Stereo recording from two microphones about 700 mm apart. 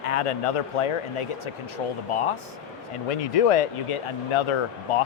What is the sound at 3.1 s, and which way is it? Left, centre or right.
Speech, left.